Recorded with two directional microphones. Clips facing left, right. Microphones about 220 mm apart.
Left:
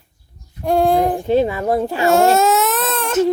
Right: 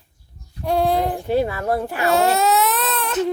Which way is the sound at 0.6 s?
50° left (ahead or behind).